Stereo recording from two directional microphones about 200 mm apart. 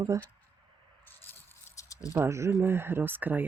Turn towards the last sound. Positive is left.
turn(degrees=-10)  # may be behind; listen again after turning